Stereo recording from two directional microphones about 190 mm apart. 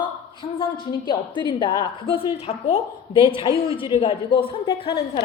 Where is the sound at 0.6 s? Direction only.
25° left (ahead or behind).